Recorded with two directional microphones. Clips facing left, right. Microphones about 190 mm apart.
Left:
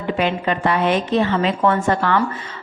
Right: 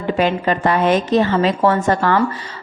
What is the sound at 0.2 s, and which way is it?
A woman's voice, 40° right (ahead or behind).